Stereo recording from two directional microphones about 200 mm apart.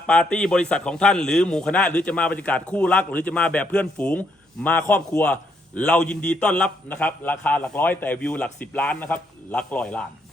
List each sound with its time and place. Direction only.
0.1 s a man's voice: 5° left (ahead or behind)